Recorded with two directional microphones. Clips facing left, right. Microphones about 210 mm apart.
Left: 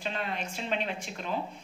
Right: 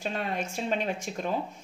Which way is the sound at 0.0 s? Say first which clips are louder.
Right 3 dB; 45° right (ahead or behind).